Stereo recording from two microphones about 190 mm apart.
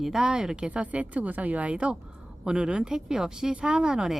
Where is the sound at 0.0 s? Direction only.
5° right (ahead or behind).